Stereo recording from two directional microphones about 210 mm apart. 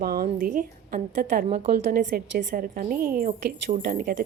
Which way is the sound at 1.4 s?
30° right (ahead or behind).